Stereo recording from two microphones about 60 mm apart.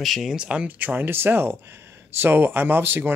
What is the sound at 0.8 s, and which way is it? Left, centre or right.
Speech, right.